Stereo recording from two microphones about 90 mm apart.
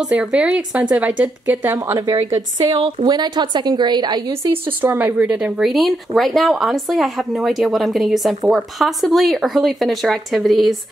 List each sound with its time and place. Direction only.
0.0 s speech: 10° right (ahead or behind)
1.8 s speech: 40° right (ahead or behind)
3.1 s a woman's voice: 55° right (ahead or behind)
4.3 s speech: 30° right (ahead or behind); by 10.8 s centre (ahead or behind)